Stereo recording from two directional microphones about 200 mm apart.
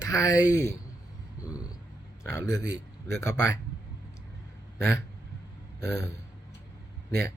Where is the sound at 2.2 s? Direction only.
15° left (ahead or behind).